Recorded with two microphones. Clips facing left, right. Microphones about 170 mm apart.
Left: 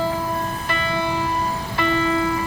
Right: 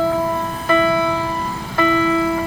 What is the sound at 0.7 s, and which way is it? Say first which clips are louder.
Music: right 11 dB; 50° right (ahead or behind).